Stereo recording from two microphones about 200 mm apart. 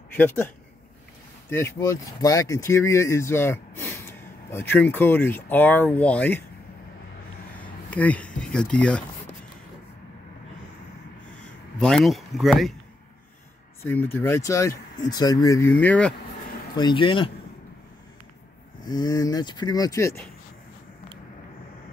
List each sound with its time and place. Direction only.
0.1 s speech: 10° left (ahead or behind)
1.5 s speech: 10° left (ahead or behind)
7.9 s speech: 10° left (ahead or behind)
11.4 s speech: centre (ahead or behind)
13.8 s speech: 10° left (ahead or behind)
16.7 s speech: 25° left (ahead or behind)
18.9 s speech: 20° left (ahead or behind)